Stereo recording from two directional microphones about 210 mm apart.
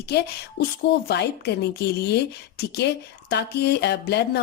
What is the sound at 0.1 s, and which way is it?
A woman's voice, 50° left (ahead or behind).